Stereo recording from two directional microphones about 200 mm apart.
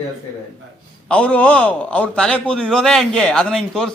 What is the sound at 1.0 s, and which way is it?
A man's voice, 5° left (ahead or behind).